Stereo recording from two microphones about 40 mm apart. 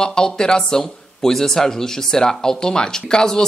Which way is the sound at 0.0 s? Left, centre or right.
Centre.